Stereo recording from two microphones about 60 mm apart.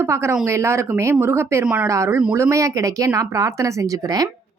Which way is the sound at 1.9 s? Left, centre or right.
Right.